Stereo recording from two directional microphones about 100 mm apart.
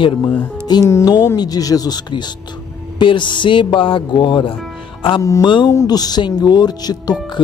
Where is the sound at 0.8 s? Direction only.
30° left (ahead or behind).